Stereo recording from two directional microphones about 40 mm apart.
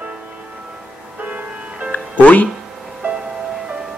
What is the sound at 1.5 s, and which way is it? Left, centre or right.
Music, right.